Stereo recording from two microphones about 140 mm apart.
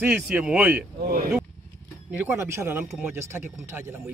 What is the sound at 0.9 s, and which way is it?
Speech, 90° right.